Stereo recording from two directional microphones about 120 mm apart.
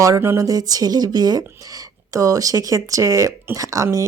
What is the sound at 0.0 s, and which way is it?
Speech, 25° right (ahead or behind).